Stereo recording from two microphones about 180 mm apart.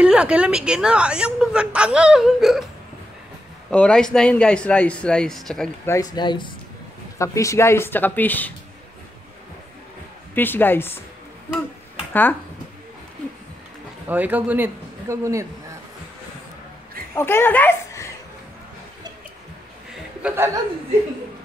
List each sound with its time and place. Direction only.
0.0 s a woman's voice: 5° right (ahead or behind)
3.7 s a woman's voice: 5° left (ahead or behind)
6.1 s speech: 25° left (ahead or behind); by 8.5 s 10° left (ahead or behind)
10.3 s speech: 10° left (ahead or behind)
12.1 s speech: 10° left (ahead or behind)
14.0 s speech: 10° right (ahead or behind)
17.1 s speech: 15° left (ahead or behind)
20.2 s speech: 10° right (ahead or behind)